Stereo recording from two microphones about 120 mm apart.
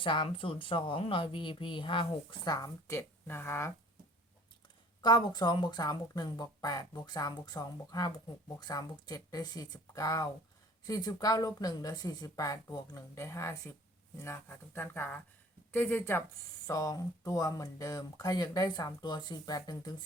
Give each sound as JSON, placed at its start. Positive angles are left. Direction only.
{"t": 0.0, "sound": "speech", "side_deg": 45}
{"t": 5.0, "sound": "speech", "side_deg": 35}
{"t": 16.6, "sound": "speech", "side_deg": 30}